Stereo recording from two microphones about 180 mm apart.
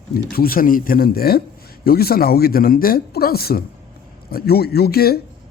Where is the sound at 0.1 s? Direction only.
55° left (ahead or behind).